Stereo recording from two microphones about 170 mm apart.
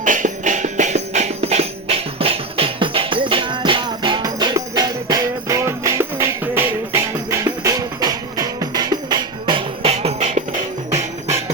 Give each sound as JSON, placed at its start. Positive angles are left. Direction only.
{"t": 0.0, "sound": "music", "side_deg": -50}